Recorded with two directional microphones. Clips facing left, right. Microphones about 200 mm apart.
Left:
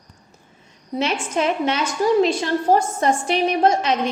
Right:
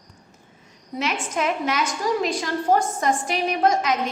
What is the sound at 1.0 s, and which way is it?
A woman's voice, 30° left (ahead or behind).